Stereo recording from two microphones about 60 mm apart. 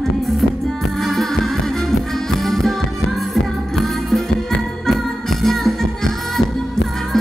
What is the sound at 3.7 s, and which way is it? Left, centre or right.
Music, centre.